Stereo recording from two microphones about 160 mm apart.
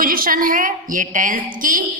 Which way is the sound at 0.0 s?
60° right (ahead or behind).